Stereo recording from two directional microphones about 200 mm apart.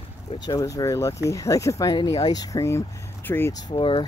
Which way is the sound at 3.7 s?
25° left (ahead or behind).